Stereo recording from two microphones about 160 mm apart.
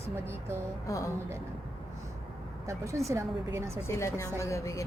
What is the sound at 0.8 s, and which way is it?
Speech, 20° left (ahead or behind).